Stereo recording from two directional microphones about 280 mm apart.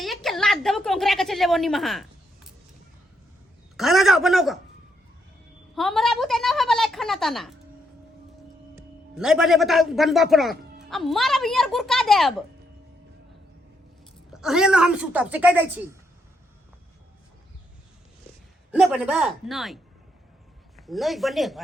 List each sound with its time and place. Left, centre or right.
0.0 s a sound: centre
3.8 s speech: centre
5.7 s a woman's voice: centre
9.1 s speech: centre
14.3 s speech: centre
18.7 s speech: centre